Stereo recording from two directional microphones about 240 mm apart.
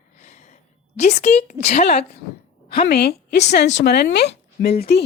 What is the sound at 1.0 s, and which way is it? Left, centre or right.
A woman's voice, left.